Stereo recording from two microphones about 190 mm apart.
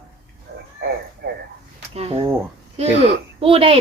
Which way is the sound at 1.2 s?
60° right (ahead or behind).